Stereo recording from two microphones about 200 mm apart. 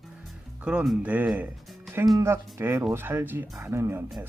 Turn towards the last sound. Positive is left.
turn(degrees=-10)  # may be behind; listen again after turning